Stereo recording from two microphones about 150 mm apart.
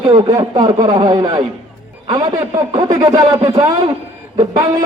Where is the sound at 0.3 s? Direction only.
25° right (ahead or behind).